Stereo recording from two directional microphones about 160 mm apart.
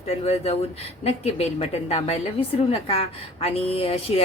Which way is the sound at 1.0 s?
40° left (ahead or behind).